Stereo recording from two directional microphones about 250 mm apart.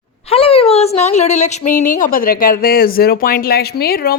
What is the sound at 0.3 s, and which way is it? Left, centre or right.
A woman's voice, left.